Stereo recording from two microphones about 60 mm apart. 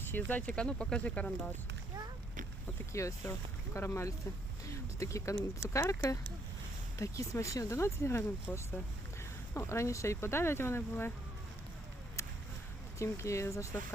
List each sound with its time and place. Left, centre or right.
0.1 s speech: left
0.5 s speech: centre
2.9 s speech: left
7.8 s speech: left
12.2 s a sound: left
13.0 s speech: left